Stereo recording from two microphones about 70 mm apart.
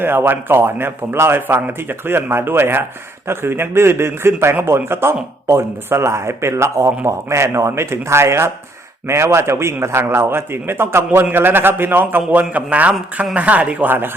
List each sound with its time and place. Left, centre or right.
0.0 s a man's voice: right